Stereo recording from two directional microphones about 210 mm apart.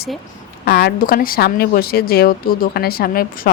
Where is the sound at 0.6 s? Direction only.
50° left (ahead or behind).